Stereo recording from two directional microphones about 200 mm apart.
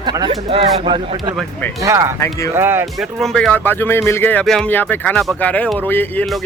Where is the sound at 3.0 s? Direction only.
Centre (ahead or behind).